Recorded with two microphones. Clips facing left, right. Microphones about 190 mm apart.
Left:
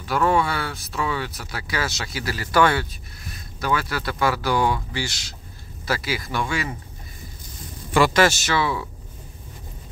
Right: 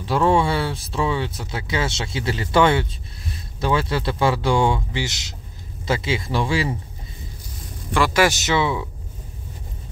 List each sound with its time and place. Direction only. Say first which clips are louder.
0.0 s speech: right 2 dB; 25° right (ahead or behind)
8.1 s speech: right 1 dB; 15° right (ahead or behind)